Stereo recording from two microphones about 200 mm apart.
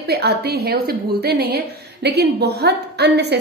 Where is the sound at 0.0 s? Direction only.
55° right (ahead or behind).